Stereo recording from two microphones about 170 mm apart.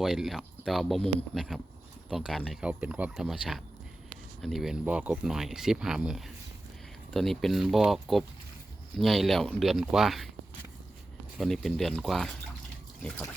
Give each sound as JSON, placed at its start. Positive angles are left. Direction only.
{"t": 0.0, "sound": "speech", "side_deg": 0}
{"t": 11.3, "sound": "speech", "side_deg": 0}